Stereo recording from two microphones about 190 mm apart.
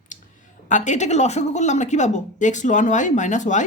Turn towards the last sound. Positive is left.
turn(degrees=40)  # may be behind; listen again after turning